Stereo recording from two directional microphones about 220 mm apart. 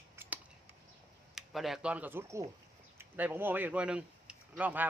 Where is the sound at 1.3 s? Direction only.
Centre (ahead or behind).